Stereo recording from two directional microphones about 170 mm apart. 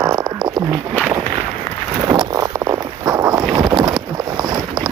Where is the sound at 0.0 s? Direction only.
20° right (ahead or behind).